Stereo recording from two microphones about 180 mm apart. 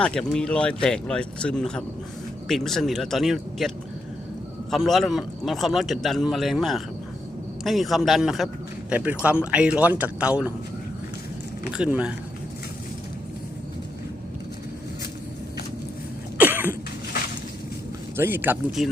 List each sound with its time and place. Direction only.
0.0 s a man's voice: 5° left (ahead or behind)
4.7 s a man's voice: centre (ahead or behind)
11.7 s a man's voice: 5° right (ahead or behind)
16.4 s cough: 10° right (ahead or behind)
18.2 s speech: 10° right (ahead or behind)